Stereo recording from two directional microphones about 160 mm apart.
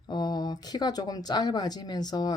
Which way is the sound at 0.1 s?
25° left (ahead or behind).